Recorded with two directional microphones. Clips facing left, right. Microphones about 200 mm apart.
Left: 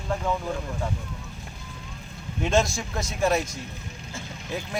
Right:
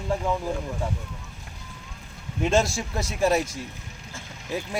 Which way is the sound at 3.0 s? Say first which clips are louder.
Right 1 dB; 30° right (ahead or behind).